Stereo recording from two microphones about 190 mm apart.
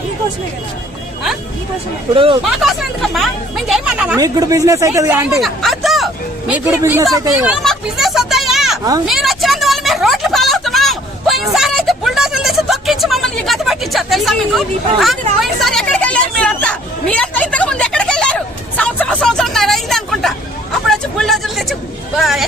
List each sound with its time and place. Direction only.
2.1 s speech: 30° right (ahead or behind)
2.4 s speech: centre (ahead or behind)
4.2 s speech: 20° right (ahead or behind)
5.4 s speech: centre (ahead or behind)
6.5 s speech: 10° right (ahead or behind)
7.5 s a sound: centre (ahead or behind)
9.0 s vehicle: centre (ahead or behind)
20.9 s a sound: centre (ahead or behind)